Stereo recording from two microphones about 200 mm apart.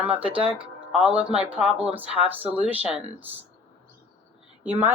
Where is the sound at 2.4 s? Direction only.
30° right (ahead or behind).